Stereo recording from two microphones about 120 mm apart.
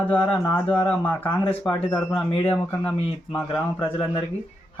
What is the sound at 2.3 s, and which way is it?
Speech, 45° left (ahead or behind).